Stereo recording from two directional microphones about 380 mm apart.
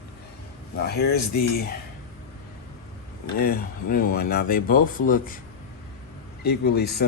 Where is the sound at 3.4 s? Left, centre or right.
Left.